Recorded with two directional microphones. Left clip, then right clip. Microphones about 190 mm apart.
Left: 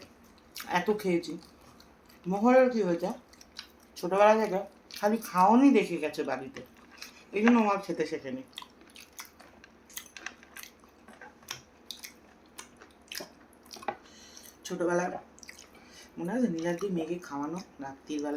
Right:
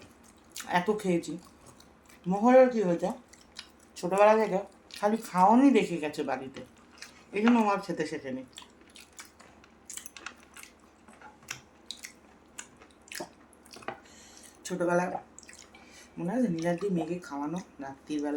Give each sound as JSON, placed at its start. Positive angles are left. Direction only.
{"t": 0.5, "sound": "speech", "side_deg": -10}
{"t": 2.3, "sound": "speech", "side_deg": -10}
{"t": 7.5, "sound": "speech", "side_deg": -10}
{"t": 14.6, "sound": "speech", "side_deg": -10}
{"t": 16.2, "sound": "speech", "side_deg": -10}